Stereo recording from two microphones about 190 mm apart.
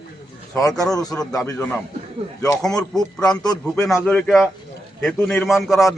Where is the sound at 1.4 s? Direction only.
10° left (ahead or behind).